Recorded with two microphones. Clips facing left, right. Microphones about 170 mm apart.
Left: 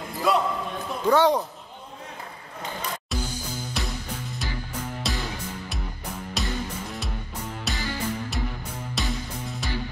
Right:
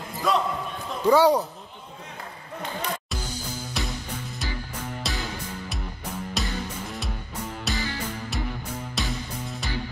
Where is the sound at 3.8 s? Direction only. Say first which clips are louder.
Right 2 dB; centre (ahead or behind).